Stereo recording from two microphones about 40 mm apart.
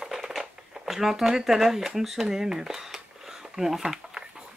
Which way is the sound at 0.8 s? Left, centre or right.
Centre.